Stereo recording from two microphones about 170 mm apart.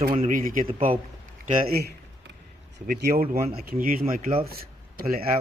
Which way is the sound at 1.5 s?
65° right (ahead or behind).